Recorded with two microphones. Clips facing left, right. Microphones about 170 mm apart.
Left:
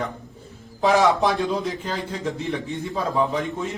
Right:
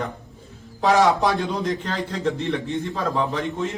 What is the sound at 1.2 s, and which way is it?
Speech, centre (ahead or behind).